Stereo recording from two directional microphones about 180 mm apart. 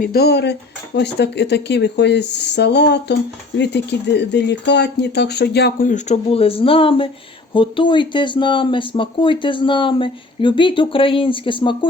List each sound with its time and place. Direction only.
0.0 s speech: 60° left (ahead or behind)
5.9 s speech: 35° left (ahead or behind)